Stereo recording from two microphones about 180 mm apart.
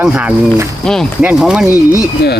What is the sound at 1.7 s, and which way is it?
Speech, 15° left (ahead or behind).